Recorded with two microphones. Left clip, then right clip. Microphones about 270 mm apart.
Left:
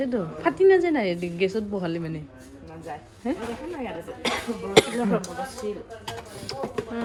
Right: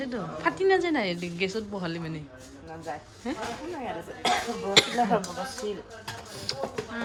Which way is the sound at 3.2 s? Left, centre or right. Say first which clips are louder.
Left 5 dB; centre.